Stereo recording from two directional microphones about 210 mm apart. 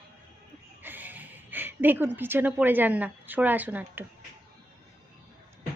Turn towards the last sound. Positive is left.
turn(degrees=-10)  # may be behind; listen again after turning